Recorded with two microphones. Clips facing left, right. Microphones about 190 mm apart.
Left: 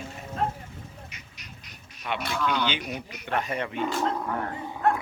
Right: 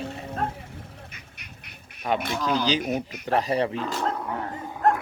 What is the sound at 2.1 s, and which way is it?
A man's voice, 40° right (ahead or behind).